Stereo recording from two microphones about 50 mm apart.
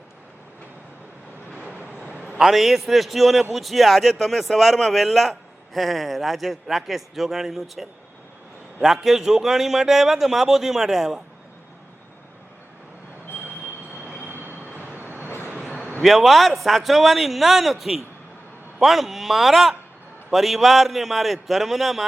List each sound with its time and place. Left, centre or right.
2.0 s a sound: right
2.4 s a man's voice: centre
14.3 s vehicle: right
16.0 s a man's voice: centre